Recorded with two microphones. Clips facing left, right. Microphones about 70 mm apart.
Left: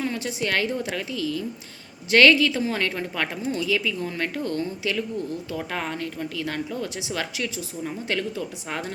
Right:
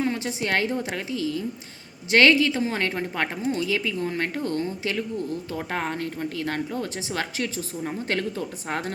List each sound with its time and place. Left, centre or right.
0.0 s a woman's voice: right